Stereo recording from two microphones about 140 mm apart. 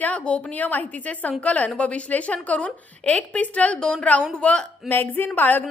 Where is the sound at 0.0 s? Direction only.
10° left (ahead or behind).